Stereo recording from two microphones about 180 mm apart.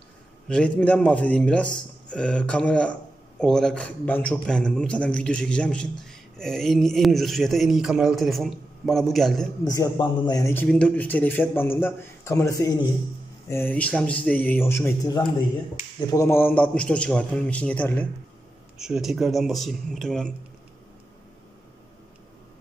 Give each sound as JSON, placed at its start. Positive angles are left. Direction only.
{"t": 0.5, "sound": "speech", "side_deg": 5}
{"t": 9.7, "sound": "a man's voice", "side_deg": 20}
{"t": 14.9, "sound": "a man's voice", "side_deg": 20}
{"t": 18.8, "sound": "speech", "side_deg": -5}